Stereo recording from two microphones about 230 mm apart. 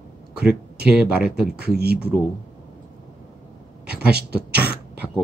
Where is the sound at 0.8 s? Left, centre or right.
Centre.